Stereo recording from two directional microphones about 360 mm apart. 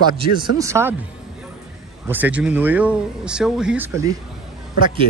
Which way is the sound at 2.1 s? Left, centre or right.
Centre.